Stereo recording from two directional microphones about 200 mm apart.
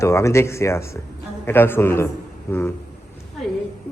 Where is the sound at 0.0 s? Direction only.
15° left (ahead or behind).